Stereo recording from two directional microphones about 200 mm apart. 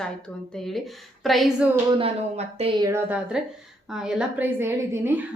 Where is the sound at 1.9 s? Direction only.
30° right (ahead or behind).